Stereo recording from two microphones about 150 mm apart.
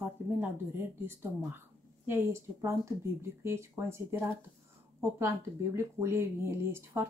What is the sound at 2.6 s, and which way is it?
Speech, 20° right (ahead or behind).